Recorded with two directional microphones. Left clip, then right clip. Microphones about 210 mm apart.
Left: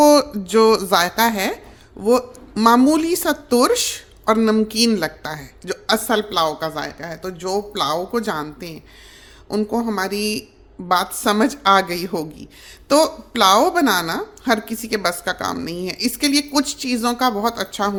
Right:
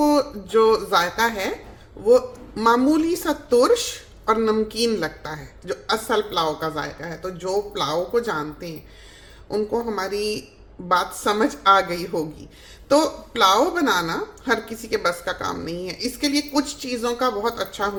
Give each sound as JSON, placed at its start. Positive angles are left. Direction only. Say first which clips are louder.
{"t": 0.0, "sound": "a woman's voice", "louder": "left 7 dB", "side_deg": 45}